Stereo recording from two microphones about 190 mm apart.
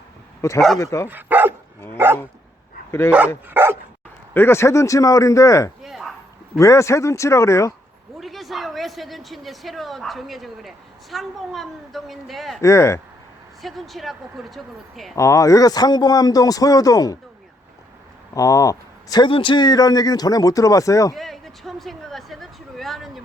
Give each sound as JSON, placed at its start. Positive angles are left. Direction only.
{"t": 0.4, "sound": "a man's voice", "side_deg": 15}
{"t": 1.0, "sound": "bow-wow", "side_deg": -10}
{"t": 3.1, "sound": "speech", "side_deg": -10}
{"t": 4.4, "sound": "a man's voice", "side_deg": 15}
{"t": 5.8, "sound": "bow-wow", "side_deg": 0}
{"t": 6.6, "sound": "a man's voice", "side_deg": 15}
{"t": 8.2, "sound": "speech", "side_deg": 0}
{"t": 12.6, "sound": "a man's voice", "side_deg": 15}
{"t": 13.6, "sound": "speech", "side_deg": 0}
{"t": 15.1, "sound": "a man's voice", "side_deg": 15}
{"t": 18.3, "sound": "a man's voice", "side_deg": 20}
{"t": 21.2, "sound": "a sound", "side_deg": 0}